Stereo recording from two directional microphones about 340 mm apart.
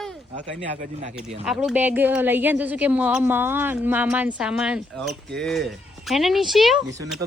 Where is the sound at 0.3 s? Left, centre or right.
Right.